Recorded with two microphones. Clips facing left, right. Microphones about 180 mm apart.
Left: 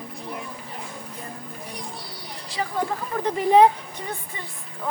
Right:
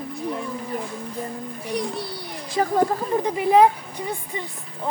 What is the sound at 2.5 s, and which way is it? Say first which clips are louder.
Speech: right 7 dB; 45° right (ahead or behind).